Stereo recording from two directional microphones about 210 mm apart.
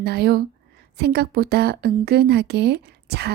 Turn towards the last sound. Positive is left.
turn(degrees=-50)  # may be behind; listen again after turning